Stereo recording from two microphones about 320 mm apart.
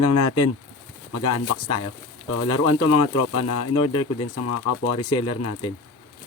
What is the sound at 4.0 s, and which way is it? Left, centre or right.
Speech, left.